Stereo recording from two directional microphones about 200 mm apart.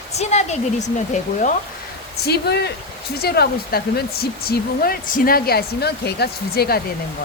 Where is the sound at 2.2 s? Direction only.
55° left (ahead or behind).